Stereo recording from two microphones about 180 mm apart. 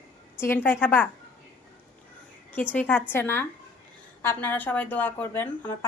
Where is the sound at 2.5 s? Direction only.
10° left (ahead or behind).